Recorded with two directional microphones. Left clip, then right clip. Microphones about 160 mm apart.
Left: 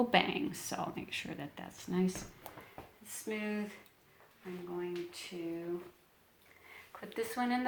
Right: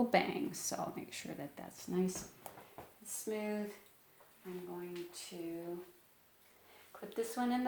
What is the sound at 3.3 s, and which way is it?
Speech, 10° right (ahead or behind).